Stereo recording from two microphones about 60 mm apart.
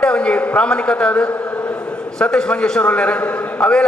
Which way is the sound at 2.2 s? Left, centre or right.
Centre.